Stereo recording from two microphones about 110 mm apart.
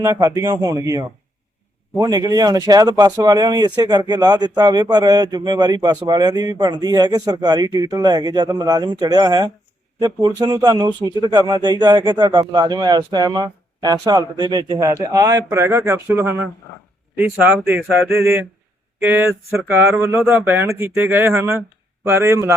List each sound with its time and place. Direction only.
0.0 s speech: 30° right (ahead or behind)
14.8 s speech: 30° right (ahead or behind)